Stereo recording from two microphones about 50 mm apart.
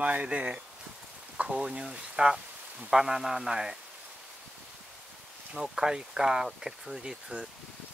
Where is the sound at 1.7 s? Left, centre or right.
Centre.